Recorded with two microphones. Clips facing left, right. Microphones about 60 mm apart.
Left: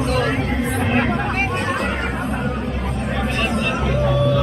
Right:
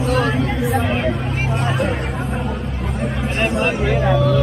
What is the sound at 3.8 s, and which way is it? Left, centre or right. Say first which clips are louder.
Music: right 1 dB; right.